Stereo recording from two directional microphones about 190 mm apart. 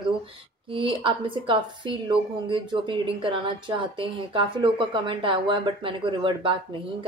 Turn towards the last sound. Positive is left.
turn(degrees=-25)  # may be behind; listen again after turning